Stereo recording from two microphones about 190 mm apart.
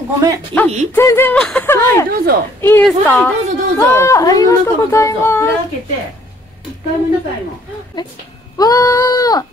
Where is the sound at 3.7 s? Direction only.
15° left (ahead or behind).